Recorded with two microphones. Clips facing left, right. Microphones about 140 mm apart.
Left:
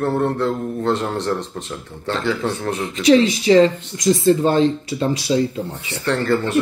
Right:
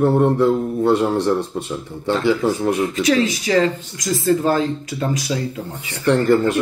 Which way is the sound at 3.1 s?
30° left (ahead or behind).